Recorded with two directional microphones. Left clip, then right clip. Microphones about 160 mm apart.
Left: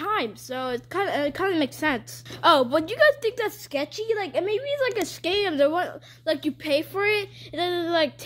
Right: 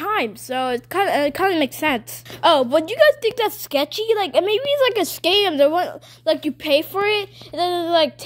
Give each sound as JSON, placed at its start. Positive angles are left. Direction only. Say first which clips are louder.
{"t": 0.0, "sound": "a woman's voice", "louder": "right 5 dB", "side_deg": -30}
{"t": 2.4, "sound": "a woman's voice", "louder": "right 4 dB", "side_deg": -10}
{"t": 3.4, "sound": "a woman's voice", "louder": "right 7 dB", "side_deg": -30}
{"t": 7.5, "sound": "a woman's voice", "louder": "right 6 dB", "side_deg": -15}